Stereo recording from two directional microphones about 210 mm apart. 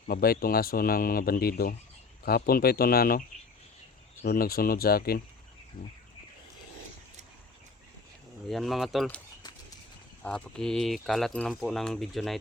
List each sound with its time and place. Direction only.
0.1 s speech: 45° left (ahead or behind)
5.8 s bird: 40° left (ahead or behind)
8.4 s speech: centre (ahead or behind)
10.2 s speech: 5° left (ahead or behind)